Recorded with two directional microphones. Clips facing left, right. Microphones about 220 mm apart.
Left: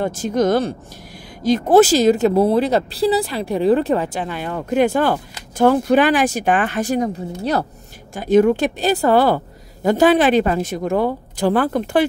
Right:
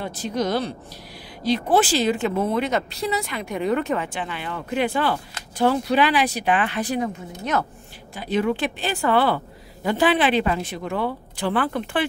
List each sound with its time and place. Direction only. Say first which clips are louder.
0.0 s a woman's voice: left 7 dB; 45° left (ahead or behind)